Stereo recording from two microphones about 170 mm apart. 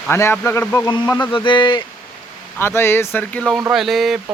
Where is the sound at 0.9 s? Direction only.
25° left (ahead or behind).